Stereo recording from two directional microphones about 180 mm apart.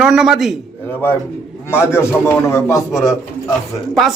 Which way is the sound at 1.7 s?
15° left (ahead or behind).